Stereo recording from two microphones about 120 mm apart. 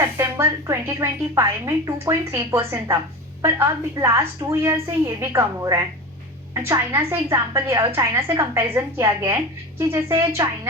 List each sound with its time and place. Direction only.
0.0 s a woman's voice: 20° right (ahead or behind)